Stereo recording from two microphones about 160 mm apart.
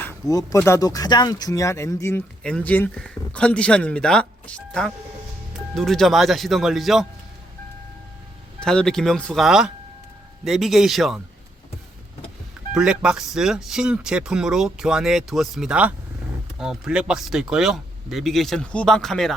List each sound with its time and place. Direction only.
0.0 s speech: 20° left (ahead or behind); by 7.1 s centre (ahead or behind)
8.6 s speech: 5° left (ahead or behind)
12.7 s speech: 5° right (ahead or behind)